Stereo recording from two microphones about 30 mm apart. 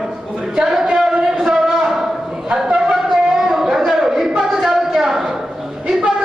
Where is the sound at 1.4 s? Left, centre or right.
Centre.